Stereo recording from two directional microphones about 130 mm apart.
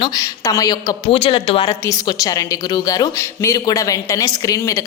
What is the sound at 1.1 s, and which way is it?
Speech, 45° left (ahead or behind).